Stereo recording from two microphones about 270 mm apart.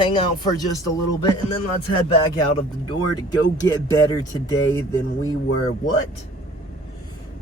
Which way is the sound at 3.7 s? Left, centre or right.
Centre.